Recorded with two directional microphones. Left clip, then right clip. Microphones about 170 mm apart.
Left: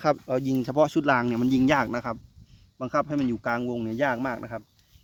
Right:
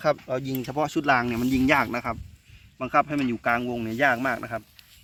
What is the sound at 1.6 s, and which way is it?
Speech, 80° left.